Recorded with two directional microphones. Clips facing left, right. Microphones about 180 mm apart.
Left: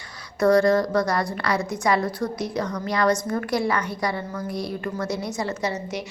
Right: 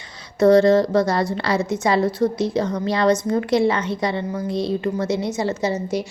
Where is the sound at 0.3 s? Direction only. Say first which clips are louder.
Right 4 dB; 25° right (ahead or behind).